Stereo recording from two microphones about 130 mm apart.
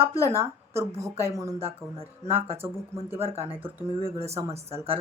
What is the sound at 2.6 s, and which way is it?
Speech, 20° right (ahead or behind).